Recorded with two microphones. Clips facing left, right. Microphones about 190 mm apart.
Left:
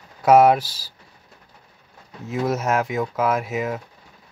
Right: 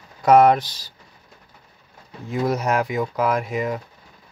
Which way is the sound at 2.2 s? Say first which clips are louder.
Even; centre (ahead or behind).